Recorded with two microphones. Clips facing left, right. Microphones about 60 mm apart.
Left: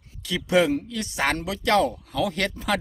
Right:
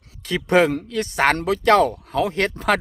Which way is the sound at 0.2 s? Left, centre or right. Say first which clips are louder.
Right 4 dB; right.